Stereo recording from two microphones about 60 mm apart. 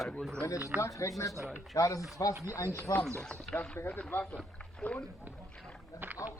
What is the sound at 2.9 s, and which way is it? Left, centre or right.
Speech, left.